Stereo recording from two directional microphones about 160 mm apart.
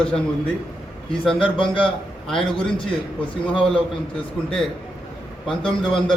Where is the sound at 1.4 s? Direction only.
30° left (ahead or behind).